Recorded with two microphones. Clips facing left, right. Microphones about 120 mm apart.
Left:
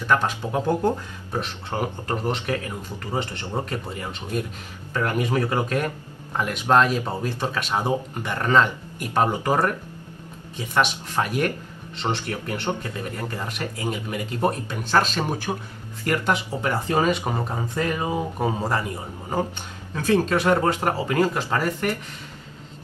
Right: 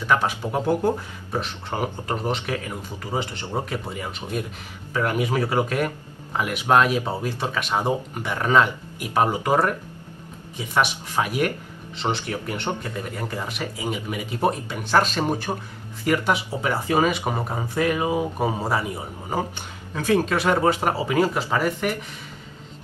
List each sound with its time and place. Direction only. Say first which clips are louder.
0.0 s speech: even; 10° right (ahead or behind)
10.7 s speech: even; 10° right (ahead or behind)